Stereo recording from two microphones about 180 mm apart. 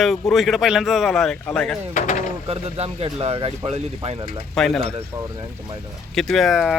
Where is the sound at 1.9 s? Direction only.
45° left (ahead or behind).